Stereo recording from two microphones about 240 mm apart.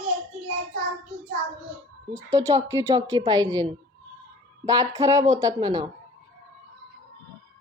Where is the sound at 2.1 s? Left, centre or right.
Centre.